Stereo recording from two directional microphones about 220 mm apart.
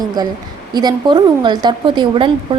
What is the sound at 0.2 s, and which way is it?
A woman's voice, 15° right (ahead or behind).